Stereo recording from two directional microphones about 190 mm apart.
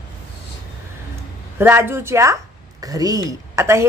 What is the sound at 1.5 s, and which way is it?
A woman's voice, 10° right (ahead or behind).